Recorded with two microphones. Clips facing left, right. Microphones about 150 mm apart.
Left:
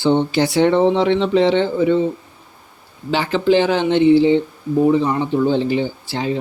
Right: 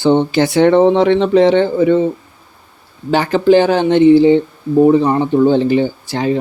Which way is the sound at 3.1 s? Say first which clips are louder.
Right 5 dB; 45° right (ahead or behind).